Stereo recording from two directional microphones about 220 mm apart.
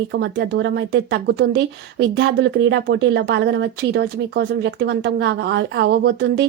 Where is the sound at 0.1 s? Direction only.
50° right (ahead or behind).